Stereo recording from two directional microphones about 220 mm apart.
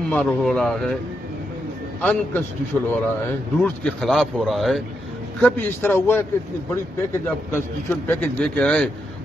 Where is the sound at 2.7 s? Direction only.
10° left (ahead or behind).